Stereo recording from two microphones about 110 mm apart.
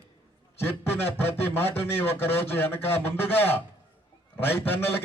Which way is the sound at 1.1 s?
20° left (ahead or behind).